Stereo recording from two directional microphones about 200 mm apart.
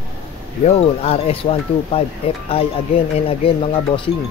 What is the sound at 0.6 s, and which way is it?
Speech, 30° left (ahead or behind).